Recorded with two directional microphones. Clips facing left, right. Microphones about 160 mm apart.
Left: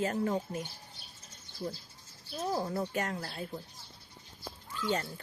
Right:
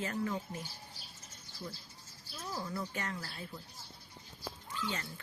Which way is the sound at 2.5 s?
45° left (ahead or behind).